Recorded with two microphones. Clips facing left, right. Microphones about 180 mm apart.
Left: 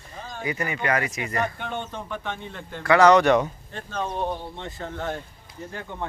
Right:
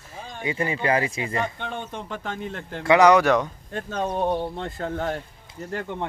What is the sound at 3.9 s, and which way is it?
Speech, 40° right (ahead or behind).